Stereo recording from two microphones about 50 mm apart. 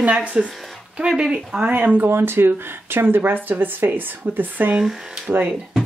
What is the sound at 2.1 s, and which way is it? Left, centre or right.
Speech, right.